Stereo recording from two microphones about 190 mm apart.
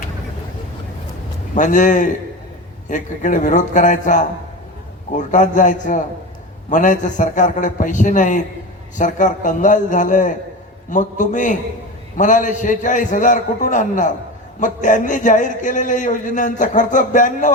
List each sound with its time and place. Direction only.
1.5 s a man's voice: 45° left (ahead or behind)